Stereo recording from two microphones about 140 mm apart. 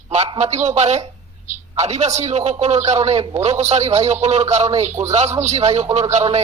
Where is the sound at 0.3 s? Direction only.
55° right (ahead or behind).